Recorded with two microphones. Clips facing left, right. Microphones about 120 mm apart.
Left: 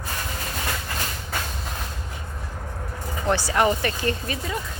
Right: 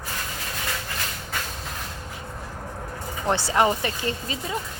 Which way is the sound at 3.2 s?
25° right (ahead or behind).